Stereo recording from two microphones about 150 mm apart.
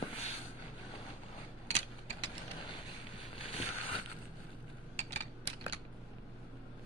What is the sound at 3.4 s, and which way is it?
Boat, 40° left (ahead or behind).